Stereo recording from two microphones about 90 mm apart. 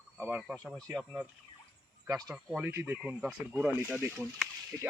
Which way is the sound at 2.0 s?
45° right (ahead or behind).